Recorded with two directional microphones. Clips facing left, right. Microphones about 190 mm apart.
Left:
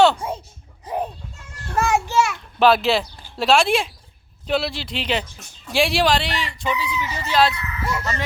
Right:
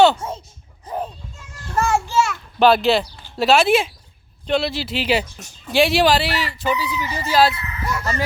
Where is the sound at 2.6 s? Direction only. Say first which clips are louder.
Right 2 dB; centre (ahead or behind).